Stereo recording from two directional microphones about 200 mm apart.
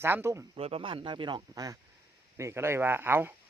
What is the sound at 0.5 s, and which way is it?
Speech, 30° right (ahead or behind).